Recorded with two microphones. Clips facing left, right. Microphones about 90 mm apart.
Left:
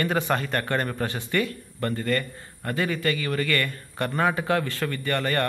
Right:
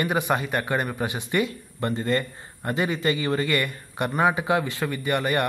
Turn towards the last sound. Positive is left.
turn(degrees=-15)  # may be behind; listen again after turning